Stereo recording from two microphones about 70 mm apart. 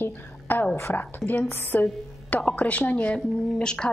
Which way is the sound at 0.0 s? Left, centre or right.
Left.